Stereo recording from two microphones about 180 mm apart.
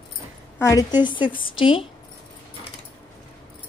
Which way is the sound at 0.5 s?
15° left (ahead or behind).